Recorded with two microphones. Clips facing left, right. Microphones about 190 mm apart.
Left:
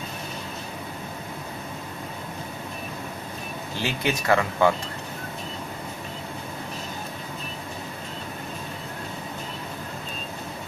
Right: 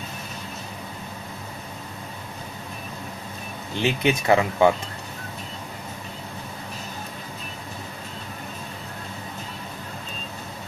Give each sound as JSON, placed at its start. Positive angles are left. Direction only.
{"t": 3.7, "sound": "speech", "side_deg": -20}